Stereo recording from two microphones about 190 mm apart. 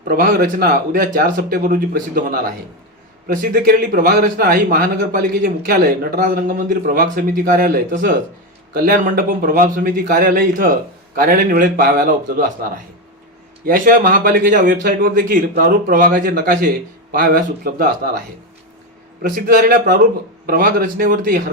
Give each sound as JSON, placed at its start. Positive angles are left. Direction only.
{"t": 0.1, "sound": "speech", "side_deg": -50}
{"t": 19.2, "sound": "speech", "side_deg": -50}